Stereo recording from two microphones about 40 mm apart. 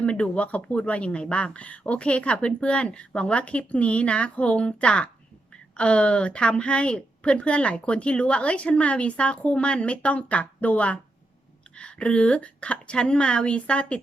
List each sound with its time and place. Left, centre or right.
0.0 s a woman's voice: left